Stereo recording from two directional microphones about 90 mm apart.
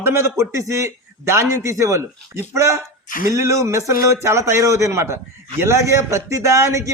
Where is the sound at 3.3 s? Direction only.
35° right (ahead or behind).